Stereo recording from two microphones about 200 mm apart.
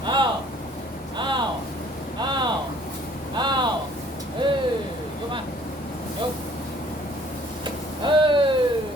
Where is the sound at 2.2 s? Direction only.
20° right (ahead or behind).